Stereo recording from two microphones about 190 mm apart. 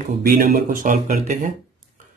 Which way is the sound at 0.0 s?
50° right (ahead or behind).